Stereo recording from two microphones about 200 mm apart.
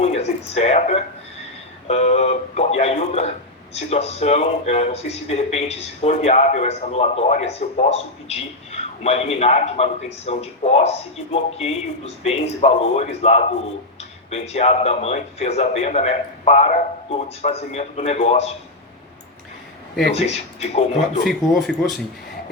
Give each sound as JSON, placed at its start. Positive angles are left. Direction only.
{"t": 0.0, "sound": "speech", "side_deg": 35}
{"t": 20.1, "sound": "speech", "side_deg": 30}
{"t": 21.2, "sound": "speech", "side_deg": 0}